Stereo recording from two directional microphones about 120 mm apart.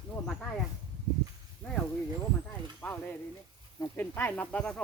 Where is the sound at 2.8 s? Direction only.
15° left (ahead or behind).